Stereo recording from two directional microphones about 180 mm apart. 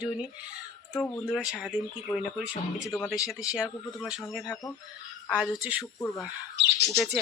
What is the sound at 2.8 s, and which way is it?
Speech, 15° left (ahead or behind).